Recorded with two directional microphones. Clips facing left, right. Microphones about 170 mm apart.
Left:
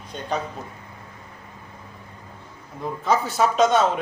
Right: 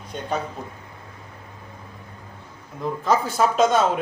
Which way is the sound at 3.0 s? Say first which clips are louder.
Even; centre (ahead or behind).